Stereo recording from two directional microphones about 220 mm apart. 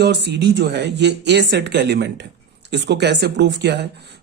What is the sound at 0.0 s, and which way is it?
Speech, 50° right (ahead or behind).